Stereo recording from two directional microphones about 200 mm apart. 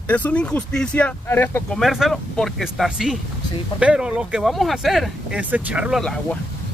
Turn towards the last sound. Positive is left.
turn(degrees=5)  # may be behind; listen again after turning